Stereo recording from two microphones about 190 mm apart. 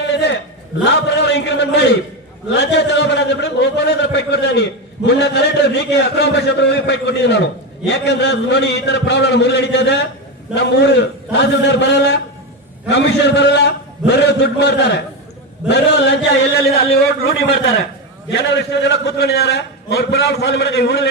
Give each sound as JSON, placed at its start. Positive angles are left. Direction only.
{"t": 0.0, "sound": "a sound", "side_deg": 65}
{"t": 0.9, "sound": "a man's voice", "side_deg": 65}
{"t": 18.3, "sound": "a man's voice", "side_deg": 65}